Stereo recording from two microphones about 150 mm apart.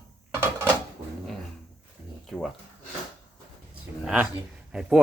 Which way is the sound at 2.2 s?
Centre (ahead or behind).